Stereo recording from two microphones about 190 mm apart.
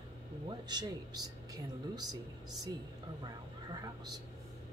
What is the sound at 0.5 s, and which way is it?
Speech, 20° right (ahead or behind).